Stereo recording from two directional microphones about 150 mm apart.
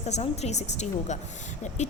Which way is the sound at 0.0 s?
45° left (ahead or behind).